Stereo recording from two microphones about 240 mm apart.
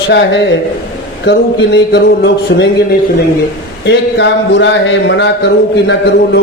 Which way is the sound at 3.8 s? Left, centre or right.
Left.